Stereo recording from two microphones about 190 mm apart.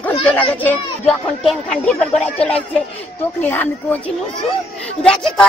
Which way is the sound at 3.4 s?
10° left (ahead or behind).